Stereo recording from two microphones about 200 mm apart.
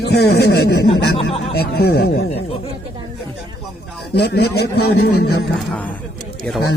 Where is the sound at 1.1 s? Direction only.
25° left (ahead or behind).